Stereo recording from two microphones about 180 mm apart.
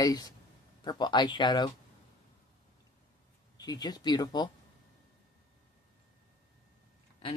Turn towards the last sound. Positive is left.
turn(degrees=30)  # may be behind; listen again after turning